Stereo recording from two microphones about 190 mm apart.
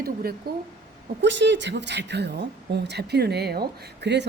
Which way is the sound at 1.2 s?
70° right (ahead or behind).